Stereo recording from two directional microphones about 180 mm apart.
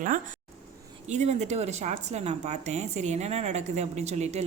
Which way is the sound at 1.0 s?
40° right (ahead or behind).